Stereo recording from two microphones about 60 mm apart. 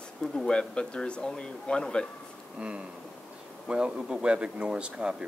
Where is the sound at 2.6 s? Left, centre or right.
Centre.